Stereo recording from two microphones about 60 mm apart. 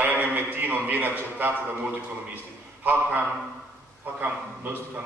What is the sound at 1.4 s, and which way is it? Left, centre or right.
Speech, right.